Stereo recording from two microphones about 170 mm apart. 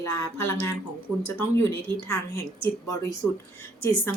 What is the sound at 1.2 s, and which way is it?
A woman's voice, 10° left (ahead or behind).